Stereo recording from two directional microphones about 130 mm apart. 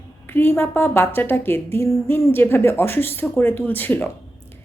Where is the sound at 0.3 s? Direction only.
15° left (ahead or behind).